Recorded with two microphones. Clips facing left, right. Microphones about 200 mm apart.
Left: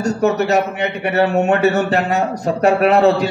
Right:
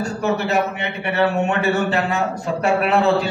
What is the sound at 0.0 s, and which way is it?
A man's voice, 40° left (ahead or behind).